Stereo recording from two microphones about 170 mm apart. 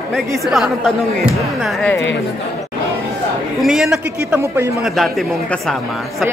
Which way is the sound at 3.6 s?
Centre (ahead or behind).